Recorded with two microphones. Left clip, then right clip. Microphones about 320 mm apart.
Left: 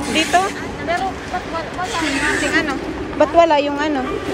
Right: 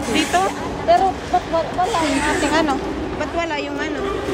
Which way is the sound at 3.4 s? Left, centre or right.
Centre.